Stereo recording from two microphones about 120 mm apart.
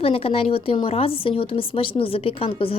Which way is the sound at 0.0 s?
55° left (ahead or behind).